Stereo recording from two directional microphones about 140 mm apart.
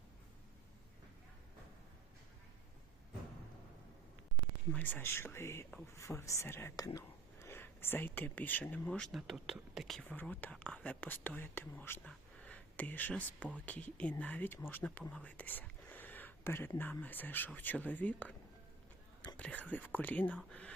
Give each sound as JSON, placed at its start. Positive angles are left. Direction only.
{"t": 4.7, "sound": "speech", "side_deg": 15}
{"t": 19.4, "sound": "speech", "side_deg": 10}